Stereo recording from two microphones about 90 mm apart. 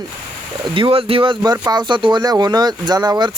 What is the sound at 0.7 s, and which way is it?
Speech, 80° right.